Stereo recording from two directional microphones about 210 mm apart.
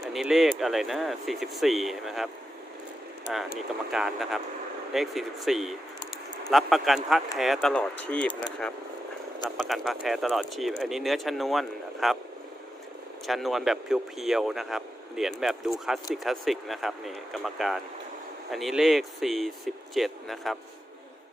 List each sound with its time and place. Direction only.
0.0 s speech: centre (ahead or behind)
3.9 s speech: centre (ahead or behind)
8.3 s speech: 20° left (ahead or behind)
9.6 s speech: centre (ahead or behind)
13.2 s speech: centre (ahead or behind)